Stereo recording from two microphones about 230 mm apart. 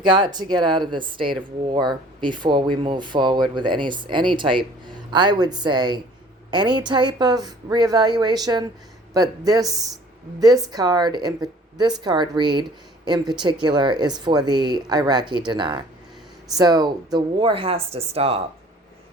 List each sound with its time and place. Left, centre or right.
0.0 s speech: centre